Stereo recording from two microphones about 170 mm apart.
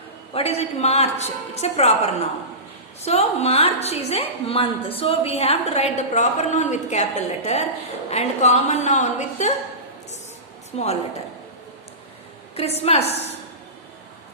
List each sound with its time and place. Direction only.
0.3 s a woman's voice: 35° left (ahead or behind)
10.7 s a woman's voice: 40° left (ahead or behind)
12.5 s a woman's voice: 35° left (ahead or behind)